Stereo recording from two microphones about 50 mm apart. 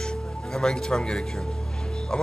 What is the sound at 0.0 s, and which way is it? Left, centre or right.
A man's voice, centre.